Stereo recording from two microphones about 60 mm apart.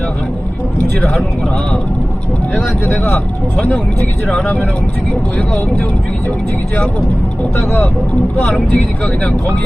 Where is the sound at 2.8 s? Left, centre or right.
Left.